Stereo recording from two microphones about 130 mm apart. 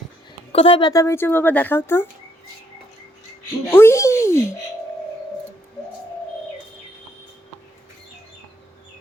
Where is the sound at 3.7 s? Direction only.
20° left (ahead or behind).